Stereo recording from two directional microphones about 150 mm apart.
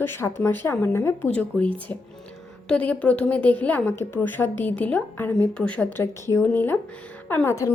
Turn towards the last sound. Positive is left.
turn(degrees=15)  # may be behind; listen again after turning